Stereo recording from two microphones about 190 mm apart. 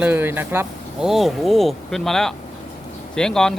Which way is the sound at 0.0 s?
10° right (ahead or behind).